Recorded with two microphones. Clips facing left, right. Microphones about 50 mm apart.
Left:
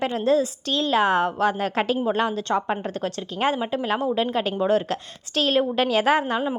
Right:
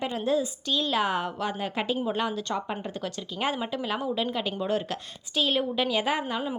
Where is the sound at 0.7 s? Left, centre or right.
Left.